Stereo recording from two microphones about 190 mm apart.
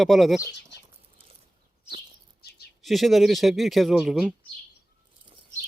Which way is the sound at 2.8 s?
Centre (ahead or behind).